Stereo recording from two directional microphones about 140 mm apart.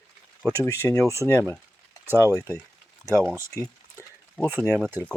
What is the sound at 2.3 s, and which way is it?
Speech, 20° left (ahead or behind).